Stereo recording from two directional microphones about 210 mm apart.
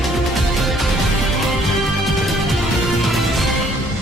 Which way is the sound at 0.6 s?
Centre (ahead or behind).